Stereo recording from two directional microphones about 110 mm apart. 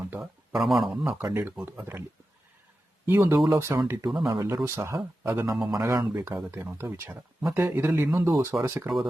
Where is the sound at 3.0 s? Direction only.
20° right (ahead or behind).